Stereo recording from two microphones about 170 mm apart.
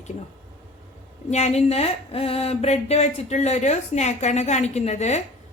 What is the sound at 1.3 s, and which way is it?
A woman's voice, 40° left (ahead or behind).